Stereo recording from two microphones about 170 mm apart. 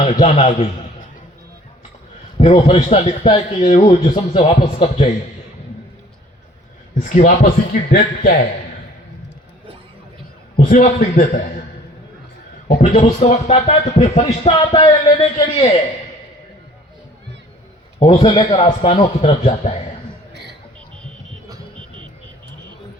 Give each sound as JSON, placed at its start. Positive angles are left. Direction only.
{"t": 0.0, "sound": "speech", "side_deg": 40}
{"t": 2.4, "sound": "speech", "side_deg": 30}
{"t": 6.9, "sound": "a man's voice", "side_deg": 50}
{"t": 10.7, "sound": "a man's voice", "side_deg": 50}
{"t": 12.6, "sound": "speech", "side_deg": 35}
{"t": 18.0, "sound": "speech", "side_deg": 30}
{"t": 21.8, "sound": "vehicle", "side_deg": -30}